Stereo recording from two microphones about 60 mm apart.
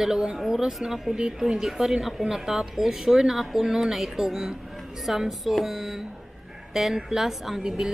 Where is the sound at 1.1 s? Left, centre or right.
Centre.